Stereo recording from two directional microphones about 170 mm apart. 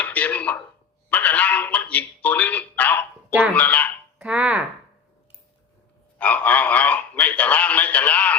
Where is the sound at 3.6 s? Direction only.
10° left (ahead or behind).